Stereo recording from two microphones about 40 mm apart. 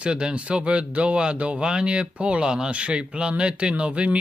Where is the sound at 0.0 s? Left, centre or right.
Right.